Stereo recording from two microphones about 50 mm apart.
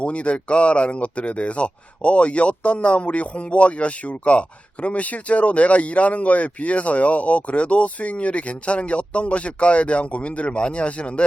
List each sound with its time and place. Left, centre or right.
0.0 s speech: left